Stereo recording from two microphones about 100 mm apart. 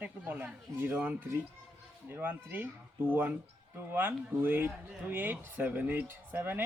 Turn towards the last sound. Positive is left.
turn(degrees=-20)  # may be behind; listen again after turning